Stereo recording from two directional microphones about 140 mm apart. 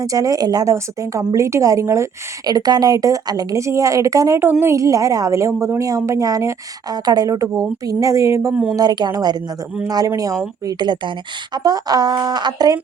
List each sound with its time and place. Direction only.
0.0 s speech: 25° right (ahead or behind)